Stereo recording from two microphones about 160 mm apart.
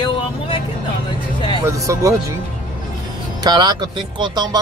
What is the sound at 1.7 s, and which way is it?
Speech, 20° right (ahead or behind).